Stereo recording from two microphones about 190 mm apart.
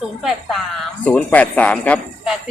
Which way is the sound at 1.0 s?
10° left (ahead or behind).